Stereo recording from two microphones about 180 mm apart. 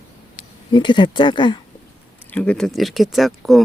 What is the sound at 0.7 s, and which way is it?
Speech, 25° left (ahead or behind).